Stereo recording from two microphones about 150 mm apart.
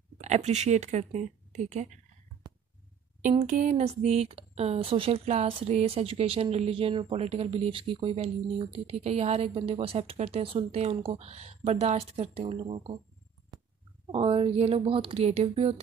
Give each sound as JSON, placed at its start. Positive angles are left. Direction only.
{"t": 0.2, "sound": "speech", "side_deg": -50}
{"t": 3.3, "sound": "speech", "side_deg": -60}
{"t": 13.5, "sound": "a sound", "side_deg": -30}
{"t": 14.1, "sound": "speech", "side_deg": -35}